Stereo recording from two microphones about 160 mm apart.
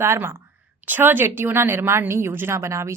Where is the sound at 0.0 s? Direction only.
15° right (ahead or behind).